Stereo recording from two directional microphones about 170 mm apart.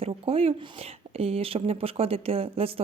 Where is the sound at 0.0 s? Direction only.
35° right (ahead or behind).